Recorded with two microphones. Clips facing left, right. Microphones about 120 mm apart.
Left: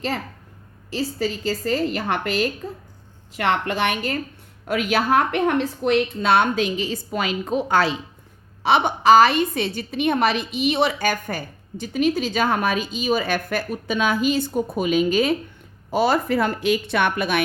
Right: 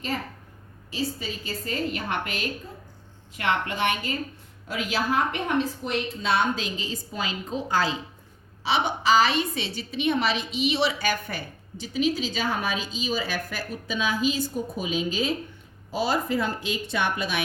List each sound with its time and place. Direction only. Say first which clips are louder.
0.9 s a woman's voice: left 6 dB; 80° left
4.6 s a woman's voice: left 6 dB; 60° left (ahead or behind)
8.6 s a woman's voice: left 7 dB; 55° left (ahead or behind)